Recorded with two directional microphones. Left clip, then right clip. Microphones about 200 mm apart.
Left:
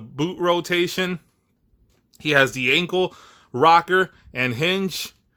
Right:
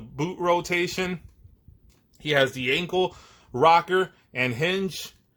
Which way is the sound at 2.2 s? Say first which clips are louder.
Left 5 dB; 50° left (ahead or behind).